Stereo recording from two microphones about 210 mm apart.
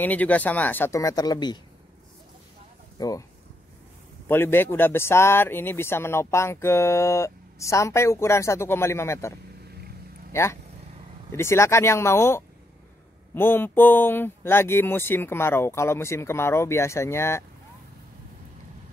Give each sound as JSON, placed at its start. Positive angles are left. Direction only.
{"t": 0.0, "sound": "speech", "side_deg": 5}
{"t": 3.0, "sound": "speech", "side_deg": 15}
{"t": 4.3, "sound": "speech", "side_deg": 10}
{"t": 10.3, "sound": "speech", "side_deg": 15}